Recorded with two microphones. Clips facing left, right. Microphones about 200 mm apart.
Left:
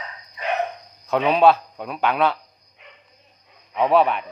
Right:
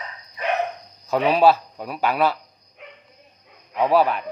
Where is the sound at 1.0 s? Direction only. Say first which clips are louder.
Even; centre (ahead or behind).